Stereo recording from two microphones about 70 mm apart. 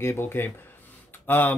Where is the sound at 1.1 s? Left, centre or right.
Left.